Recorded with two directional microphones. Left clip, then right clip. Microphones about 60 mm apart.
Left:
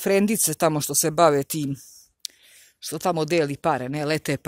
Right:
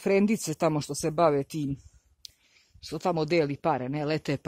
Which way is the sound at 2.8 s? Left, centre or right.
Centre.